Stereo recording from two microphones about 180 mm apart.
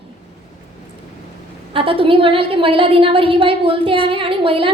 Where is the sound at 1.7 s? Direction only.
30° right (ahead or behind).